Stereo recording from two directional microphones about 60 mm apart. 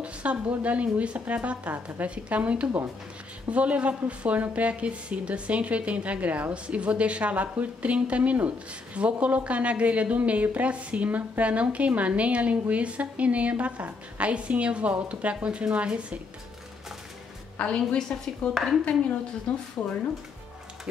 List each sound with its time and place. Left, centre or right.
0.0 s a woman's voice: right
17.6 s a woman's voice: centre